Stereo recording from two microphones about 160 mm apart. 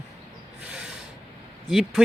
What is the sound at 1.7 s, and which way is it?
Speech, centre (ahead or behind).